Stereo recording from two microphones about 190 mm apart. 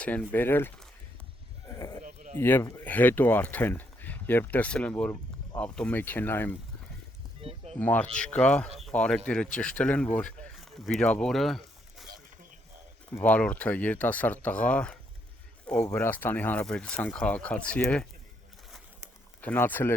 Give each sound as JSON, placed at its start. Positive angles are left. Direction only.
{"t": 0.0, "sound": "speech", "side_deg": 10}
{"t": 2.4, "sound": "speech", "side_deg": 10}
{"t": 7.4, "sound": "a sound", "side_deg": -30}
{"t": 7.8, "sound": "speech", "side_deg": 10}
{"t": 12.0, "sound": "a sound", "side_deg": -50}
{"t": 13.1, "sound": "speech", "side_deg": 10}
{"t": 19.4, "sound": "speech", "side_deg": 10}